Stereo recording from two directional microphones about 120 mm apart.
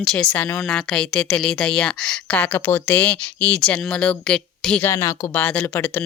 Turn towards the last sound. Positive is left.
turn(degrees=15)  # may be behind; listen again after turning